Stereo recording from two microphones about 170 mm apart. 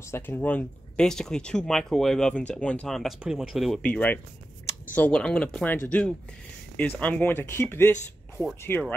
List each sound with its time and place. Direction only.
0.1 s speech: 10° left (ahead or behind)